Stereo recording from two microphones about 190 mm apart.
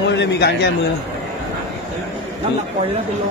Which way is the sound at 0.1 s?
65° left (ahead or behind).